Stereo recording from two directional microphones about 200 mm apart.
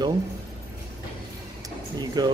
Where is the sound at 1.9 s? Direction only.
20° right (ahead or behind).